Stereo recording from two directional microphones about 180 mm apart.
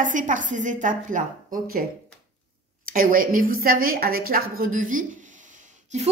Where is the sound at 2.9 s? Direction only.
50° right (ahead or behind).